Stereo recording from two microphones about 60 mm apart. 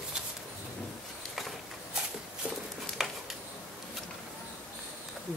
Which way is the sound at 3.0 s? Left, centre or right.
Centre.